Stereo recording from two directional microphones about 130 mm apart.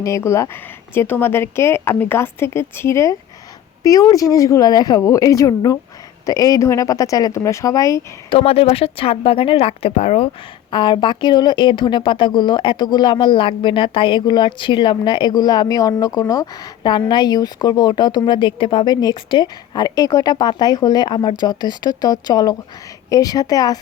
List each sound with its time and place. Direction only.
0.0 s speech: 20° left (ahead or behind)
8.3 s speech: 50° left (ahead or behind)
10.7 s speech: 35° left (ahead or behind)